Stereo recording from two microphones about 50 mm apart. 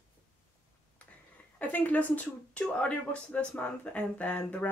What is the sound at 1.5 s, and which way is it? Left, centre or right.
Speech, left.